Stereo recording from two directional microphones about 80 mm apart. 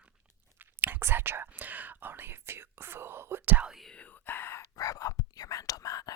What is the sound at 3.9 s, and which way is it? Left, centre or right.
Whispering, centre.